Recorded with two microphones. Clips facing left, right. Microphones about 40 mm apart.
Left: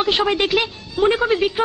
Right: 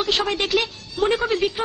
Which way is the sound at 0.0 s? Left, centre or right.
Centre.